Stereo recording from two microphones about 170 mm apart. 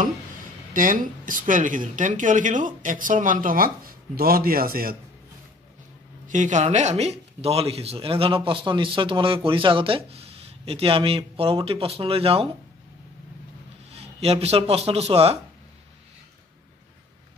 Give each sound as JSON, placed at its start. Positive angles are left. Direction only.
{"t": 0.7, "sound": "speech", "side_deg": -55}
{"t": 6.2, "sound": "speech", "side_deg": -50}
{"t": 13.9, "sound": "speech", "side_deg": -35}